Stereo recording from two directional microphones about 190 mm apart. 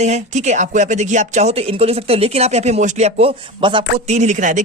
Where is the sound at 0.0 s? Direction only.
40° right (ahead or behind).